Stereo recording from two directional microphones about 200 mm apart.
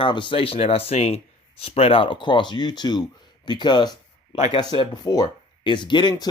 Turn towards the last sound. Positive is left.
turn(degrees=20)  # may be behind; listen again after turning